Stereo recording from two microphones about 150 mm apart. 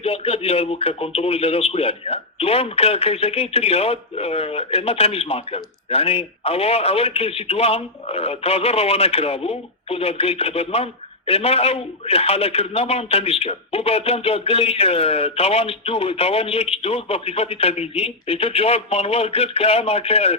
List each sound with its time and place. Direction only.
0.0 s speech: 40° left (ahead or behind)